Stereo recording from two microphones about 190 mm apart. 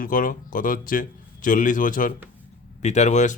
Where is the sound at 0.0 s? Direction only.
45° left (ahead or behind).